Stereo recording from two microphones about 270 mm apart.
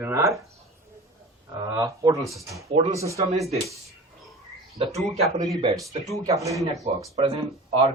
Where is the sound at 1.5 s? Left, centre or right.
Centre.